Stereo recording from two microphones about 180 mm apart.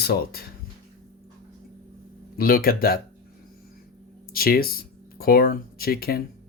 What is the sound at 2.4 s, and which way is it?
Speech, 55° left (ahead or behind).